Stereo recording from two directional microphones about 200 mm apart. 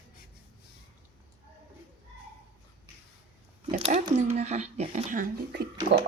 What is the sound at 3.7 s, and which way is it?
Speech, 35° right (ahead or behind).